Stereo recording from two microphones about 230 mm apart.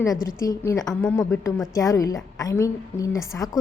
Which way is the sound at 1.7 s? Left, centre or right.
Centre.